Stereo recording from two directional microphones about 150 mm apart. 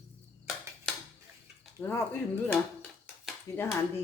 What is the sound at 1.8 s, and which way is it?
Speech, 15° left (ahead or behind).